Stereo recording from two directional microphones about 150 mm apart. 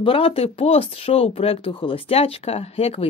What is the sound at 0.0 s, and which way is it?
Speech, 40° left (ahead or behind).